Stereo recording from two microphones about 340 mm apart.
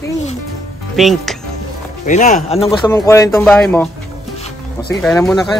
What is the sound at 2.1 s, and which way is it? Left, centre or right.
Speech, left.